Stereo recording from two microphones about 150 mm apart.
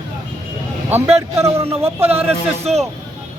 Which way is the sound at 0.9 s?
10° right (ahead or behind).